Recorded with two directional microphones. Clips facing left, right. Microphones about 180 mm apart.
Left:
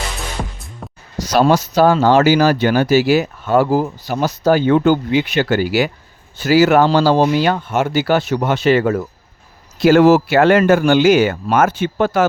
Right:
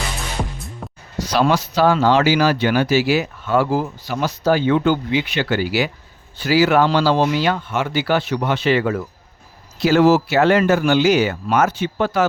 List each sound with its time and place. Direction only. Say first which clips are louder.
0.8 s music: left 3 dB; centre (ahead or behind)
1.3 s speech: left 4 dB; 45° left (ahead or behind)
9.8 s speech: left 4 dB; 55° left (ahead or behind)